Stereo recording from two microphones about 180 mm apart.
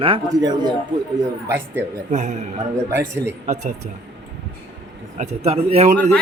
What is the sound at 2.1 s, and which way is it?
Speech, 40° right (ahead or behind).